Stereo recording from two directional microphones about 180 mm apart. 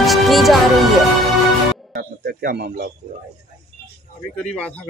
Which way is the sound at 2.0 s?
60° right (ahead or behind).